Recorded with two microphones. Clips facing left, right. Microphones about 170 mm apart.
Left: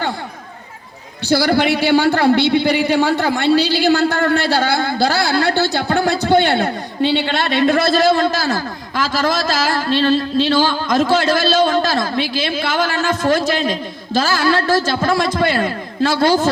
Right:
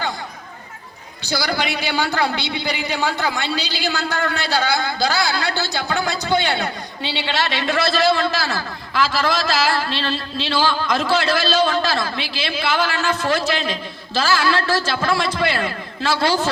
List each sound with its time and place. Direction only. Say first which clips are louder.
1.2 s a man's voice: left 8 dB; 55° left (ahead or behind)